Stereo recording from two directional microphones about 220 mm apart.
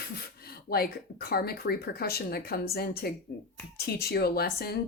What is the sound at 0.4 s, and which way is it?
Speech, 45° left (ahead or behind).